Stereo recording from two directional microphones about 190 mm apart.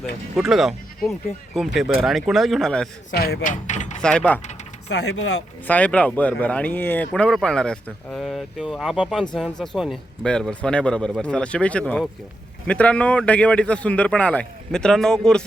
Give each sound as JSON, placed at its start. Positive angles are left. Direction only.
{"t": 0.3, "sound": "speech", "side_deg": 0}
{"t": 3.1, "sound": "speech", "side_deg": 55}
{"t": 4.0, "sound": "speech", "side_deg": 5}
{"t": 4.9, "sound": "speech", "side_deg": 65}
{"t": 5.6, "sound": "speech", "side_deg": 10}